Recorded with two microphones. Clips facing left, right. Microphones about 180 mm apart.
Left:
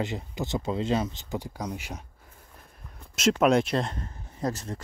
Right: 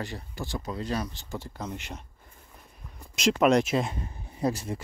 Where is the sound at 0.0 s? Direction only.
20° left (ahead or behind).